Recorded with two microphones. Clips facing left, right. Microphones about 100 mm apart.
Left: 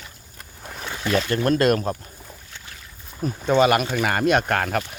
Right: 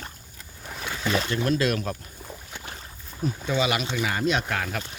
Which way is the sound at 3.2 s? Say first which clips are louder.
Left 7 dB; 50° left (ahead or behind).